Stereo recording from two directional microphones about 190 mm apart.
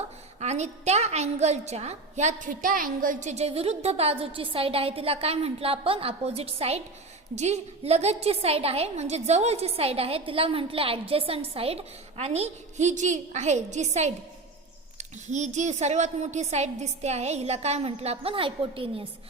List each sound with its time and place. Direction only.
0.3 s a woman's voice: 35° right (ahead or behind)
15.3 s a woman's voice: 40° right (ahead or behind)